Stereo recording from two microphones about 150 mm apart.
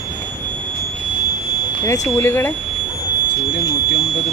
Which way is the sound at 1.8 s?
20° left (ahead or behind).